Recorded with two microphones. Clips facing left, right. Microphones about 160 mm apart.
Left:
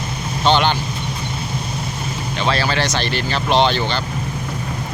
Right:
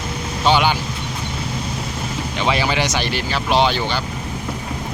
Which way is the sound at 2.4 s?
15° right (ahead or behind).